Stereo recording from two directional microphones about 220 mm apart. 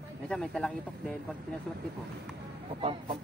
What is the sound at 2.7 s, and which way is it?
Chicken, 25° right (ahead or behind).